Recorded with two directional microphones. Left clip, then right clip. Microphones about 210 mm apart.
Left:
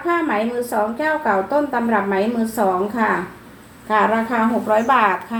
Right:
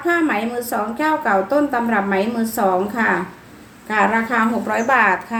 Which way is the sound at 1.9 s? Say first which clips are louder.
Even; 30° right (ahead or behind).